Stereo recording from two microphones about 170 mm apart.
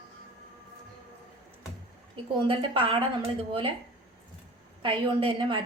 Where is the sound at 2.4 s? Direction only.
30° right (ahead or behind).